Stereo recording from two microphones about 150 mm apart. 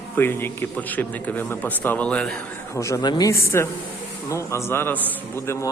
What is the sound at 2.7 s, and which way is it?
A man's voice, 20° left (ahead or behind).